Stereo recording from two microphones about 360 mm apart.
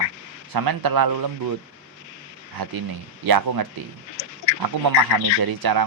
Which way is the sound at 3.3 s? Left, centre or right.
Right.